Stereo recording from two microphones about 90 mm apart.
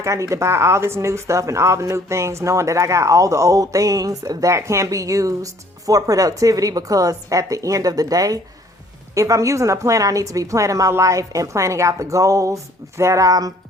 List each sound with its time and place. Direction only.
0.0 s speech: 35° right (ahead or behind)